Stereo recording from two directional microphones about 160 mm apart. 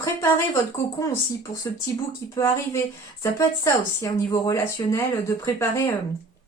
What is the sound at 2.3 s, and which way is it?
Speech, 20° left (ahead or behind).